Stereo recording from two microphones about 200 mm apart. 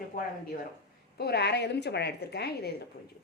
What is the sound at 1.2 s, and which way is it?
A woman's voice, 55° left (ahead or behind).